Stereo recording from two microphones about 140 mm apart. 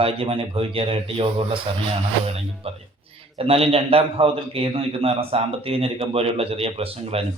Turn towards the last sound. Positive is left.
turn(degrees=-45)  # may be behind; listen again after turning